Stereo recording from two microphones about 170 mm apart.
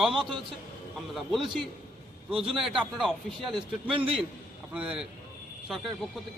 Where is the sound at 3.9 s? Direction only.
30° right (ahead or behind).